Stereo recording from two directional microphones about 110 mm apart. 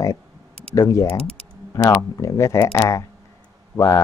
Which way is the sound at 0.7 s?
30° left (ahead or behind).